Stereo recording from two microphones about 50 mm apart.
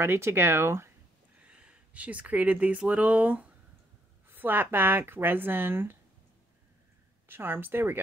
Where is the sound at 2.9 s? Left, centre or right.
Right.